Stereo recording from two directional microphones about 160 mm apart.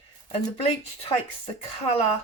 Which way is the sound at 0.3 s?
35° left (ahead or behind).